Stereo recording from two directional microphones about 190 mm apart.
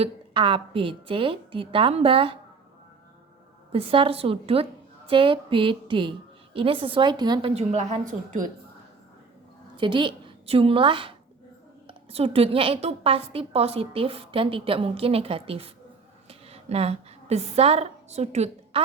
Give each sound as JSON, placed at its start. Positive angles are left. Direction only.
{"t": 0.0, "sound": "a woman's voice", "side_deg": -25}
{"t": 3.7, "sound": "a woman's voice", "side_deg": -30}
{"t": 9.7, "sound": "a woman's voice", "side_deg": -25}